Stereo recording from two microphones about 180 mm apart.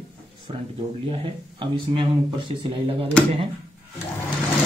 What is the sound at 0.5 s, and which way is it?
Speech, 30° right (ahead or behind).